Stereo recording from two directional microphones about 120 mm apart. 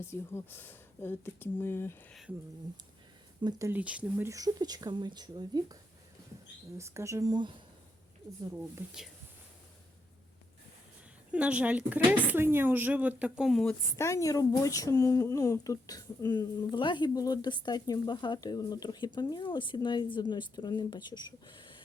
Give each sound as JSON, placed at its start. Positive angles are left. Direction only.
{"t": 0.0, "sound": "speech", "side_deg": 20}
{"t": 3.7, "sound": "speech", "side_deg": -10}
{"t": 4.3, "sound": "speech", "side_deg": -30}
{"t": 6.7, "sound": "speech", "side_deg": -25}
{"t": 11.3, "sound": "speech", "side_deg": -10}
{"t": 13.9, "sound": "speech", "side_deg": 25}